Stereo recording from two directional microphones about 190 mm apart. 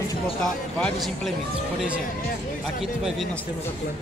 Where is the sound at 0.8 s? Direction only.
Centre (ahead or behind).